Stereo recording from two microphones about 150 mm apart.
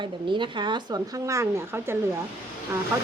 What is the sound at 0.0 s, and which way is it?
A woman's voice, 30° right (ahead or behind).